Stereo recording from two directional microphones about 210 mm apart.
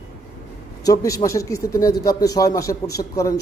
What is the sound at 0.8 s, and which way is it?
A man's voice, 15° left (ahead or behind).